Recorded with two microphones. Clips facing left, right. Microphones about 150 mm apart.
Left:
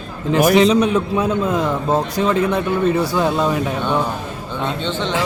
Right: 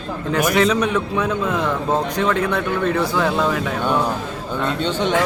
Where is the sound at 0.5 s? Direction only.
25° left (ahead or behind).